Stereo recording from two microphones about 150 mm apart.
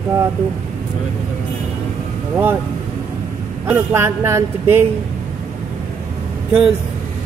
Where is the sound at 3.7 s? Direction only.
15° right (ahead or behind).